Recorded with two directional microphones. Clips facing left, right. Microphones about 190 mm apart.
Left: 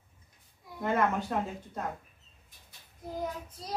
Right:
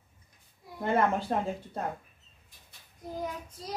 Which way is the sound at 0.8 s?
30° right (ahead or behind).